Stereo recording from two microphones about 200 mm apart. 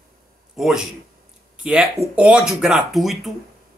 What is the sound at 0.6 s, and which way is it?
Speech, centre (ahead or behind).